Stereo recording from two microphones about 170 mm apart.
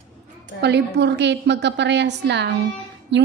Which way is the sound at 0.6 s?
85° right.